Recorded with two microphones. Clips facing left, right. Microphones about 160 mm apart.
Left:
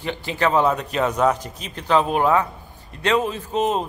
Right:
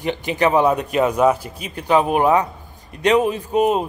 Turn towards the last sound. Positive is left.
turn(degrees=-10)  # may be behind; listen again after turning